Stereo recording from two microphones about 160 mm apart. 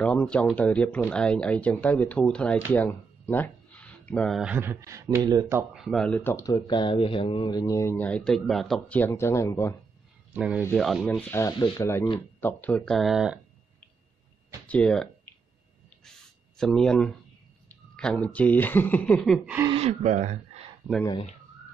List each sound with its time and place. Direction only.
0.0 s speech: 5° left (ahead or behind); by 5.7 s 20° right (ahead or behind)
5.7 s speech: centre (ahead or behind); by 9.8 s 15° left (ahead or behind)
10.3 s speech: 5° right (ahead or behind)
11.1 s speech: 15° left (ahead or behind); by 13.4 s 5° right (ahead or behind)
14.7 s speech: 5° left (ahead or behind)
16.0 s a sound: 5° left (ahead or behind)
17.6 s speech: 5° left (ahead or behind)
19.7 s speech: 40° right (ahead or behind)